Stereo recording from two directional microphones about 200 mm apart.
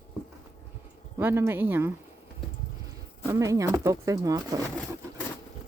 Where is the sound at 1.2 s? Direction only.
10° right (ahead or behind).